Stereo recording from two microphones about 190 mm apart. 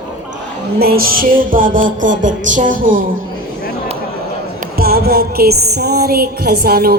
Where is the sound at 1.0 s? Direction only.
50° right (ahead or behind).